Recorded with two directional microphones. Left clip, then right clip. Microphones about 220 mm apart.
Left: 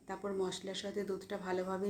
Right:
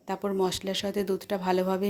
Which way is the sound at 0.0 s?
35° right (ahead or behind).